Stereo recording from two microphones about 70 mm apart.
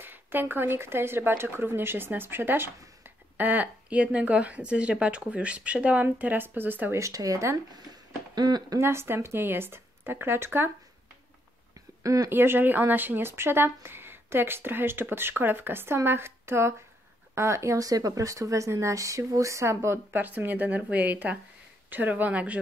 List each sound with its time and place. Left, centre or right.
0.0 s speech: right
7.0 s speech: right
7.7 s a sound: right
8.7 s speech: right
12.0 s speech: right
12.3 s speech: right
20.1 s speech: right